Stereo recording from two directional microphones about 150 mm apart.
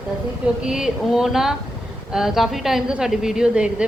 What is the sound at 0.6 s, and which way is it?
Speech, 5° right (ahead or behind).